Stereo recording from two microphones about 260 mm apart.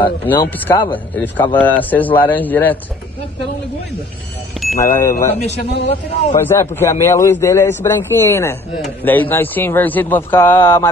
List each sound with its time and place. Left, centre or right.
0.0 s a man's voice: centre
4.7 s a man's voice: centre
5.6 s a man's voice: left
6.4 s a man's voice: centre